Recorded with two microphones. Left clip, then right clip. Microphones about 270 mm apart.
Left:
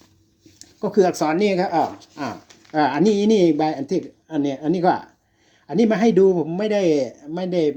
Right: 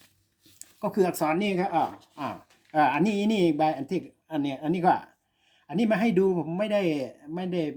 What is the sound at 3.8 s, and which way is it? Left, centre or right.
Speech, centre.